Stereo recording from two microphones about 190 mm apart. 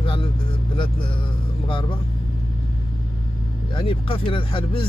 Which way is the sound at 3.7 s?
25° left (ahead or behind).